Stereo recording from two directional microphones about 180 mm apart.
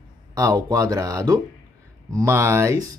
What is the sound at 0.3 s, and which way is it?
Speech, 20° right (ahead or behind).